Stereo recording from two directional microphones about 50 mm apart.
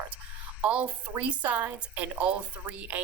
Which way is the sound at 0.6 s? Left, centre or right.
Right.